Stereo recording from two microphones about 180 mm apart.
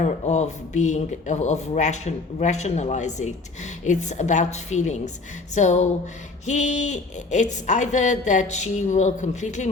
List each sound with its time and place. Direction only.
0.0 s speech: 40° left (ahead or behind)